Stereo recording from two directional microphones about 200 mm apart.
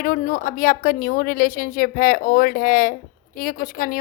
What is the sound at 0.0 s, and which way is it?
Speech, 45° left (ahead or behind).